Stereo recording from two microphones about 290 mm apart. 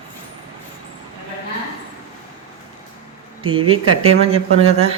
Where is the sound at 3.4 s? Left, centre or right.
Centre.